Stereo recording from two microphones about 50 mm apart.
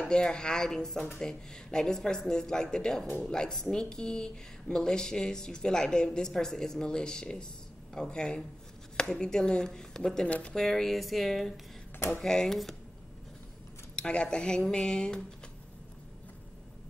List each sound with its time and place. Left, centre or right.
0.1 s speech: centre
13.9 s speech: centre